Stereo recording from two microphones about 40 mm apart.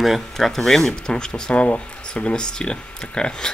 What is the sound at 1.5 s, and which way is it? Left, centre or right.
Speech, left.